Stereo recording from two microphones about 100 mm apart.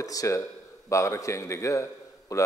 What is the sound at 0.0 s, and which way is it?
A man's voice, 35° left (ahead or behind).